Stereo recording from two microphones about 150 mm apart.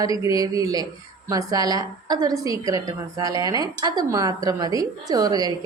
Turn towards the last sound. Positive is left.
turn(degrees=-25)  # may be behind; listen again after turning